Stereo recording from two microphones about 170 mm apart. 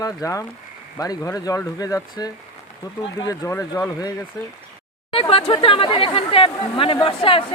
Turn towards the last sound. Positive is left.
turn(degrees=30)  # may be behind; listen again after turning